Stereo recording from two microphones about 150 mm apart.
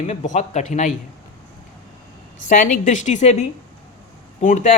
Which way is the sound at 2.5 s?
60° left (ahead or behind).